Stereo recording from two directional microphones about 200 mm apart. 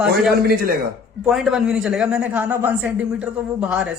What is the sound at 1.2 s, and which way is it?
Speech, centre (ahead or behind).